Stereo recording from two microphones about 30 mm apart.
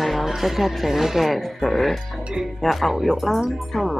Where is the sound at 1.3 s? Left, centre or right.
Centre.